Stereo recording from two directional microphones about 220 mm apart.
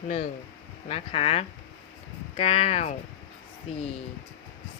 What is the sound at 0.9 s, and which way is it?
Speech, 25° left (ahead or behind).